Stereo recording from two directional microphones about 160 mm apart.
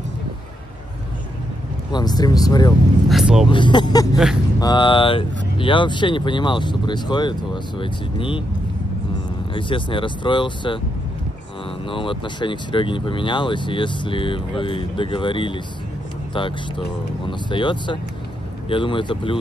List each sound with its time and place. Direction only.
1.9 s speech: 25° left (ahead or behind)
3.1 s speech: 5° right (ahead or behind)
3.4 s speech: 30° left (ahead or behind)
9.5 s speech: 30° left (ahead or behind)
11.9 s speech: 30° left (ahead or behind)